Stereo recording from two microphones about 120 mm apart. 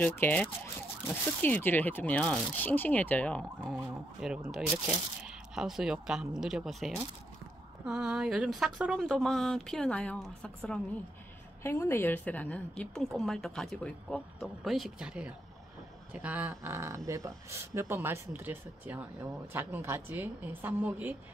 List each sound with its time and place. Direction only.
0.0 s speech: 15° left (ahead or behind)
4.5 s a woman's voice: 5° right (ahead or behind)
9.0 s a woman's voice: 5° left (ahead or behind)
11.6 s a woman's voice: 20° left (ahead or behind); by 21.2 s 15° right (ahead or behind)